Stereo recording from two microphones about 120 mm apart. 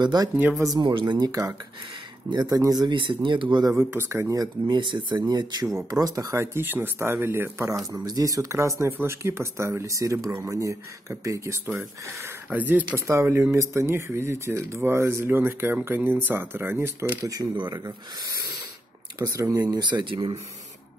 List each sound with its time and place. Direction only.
0.0 s speech: 35° right (ahead or behind)
0.8 s speech: 40° right (ahead or behind)
3.7 s speech: 20° right (ahead or behind); by 20.3 s 40° right (ahead or behind)